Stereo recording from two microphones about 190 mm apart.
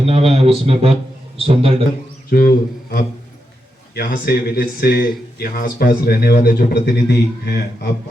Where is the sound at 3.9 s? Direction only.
50° left (ahead or behind).